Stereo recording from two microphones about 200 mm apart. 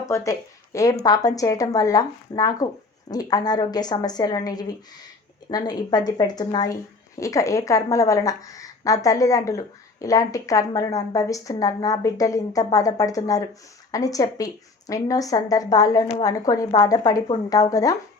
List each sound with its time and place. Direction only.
0.1 s a woman's voice: 15° left (ahead or behind)